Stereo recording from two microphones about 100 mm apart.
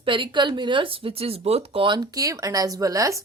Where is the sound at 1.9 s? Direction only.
35° right (ahead or behind).